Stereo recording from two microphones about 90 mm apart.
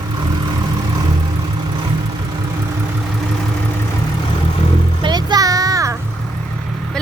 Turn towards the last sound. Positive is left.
turn(degrees=-40)  # may be behind; listen again after turning